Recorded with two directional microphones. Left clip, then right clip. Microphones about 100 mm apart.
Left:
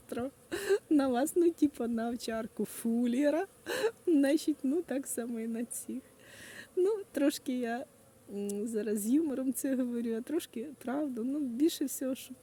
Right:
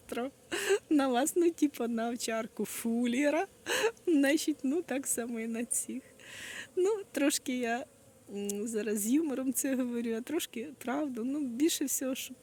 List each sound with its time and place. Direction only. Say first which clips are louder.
0.1 s speech: right 1 dB; 45° left (ahead or behind)